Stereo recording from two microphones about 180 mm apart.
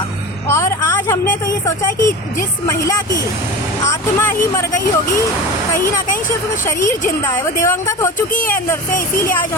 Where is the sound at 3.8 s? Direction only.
10° left (ahead or behind).